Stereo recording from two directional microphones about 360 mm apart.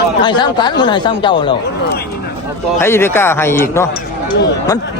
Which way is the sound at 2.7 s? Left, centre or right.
Centre.